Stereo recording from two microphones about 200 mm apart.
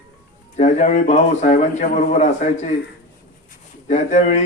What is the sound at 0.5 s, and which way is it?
A man's voice, 35° left (ahead or behind).